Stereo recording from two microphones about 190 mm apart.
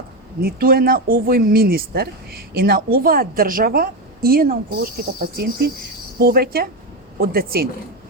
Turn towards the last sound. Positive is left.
turn(degrees=-50)  # may be behind; listen again after turning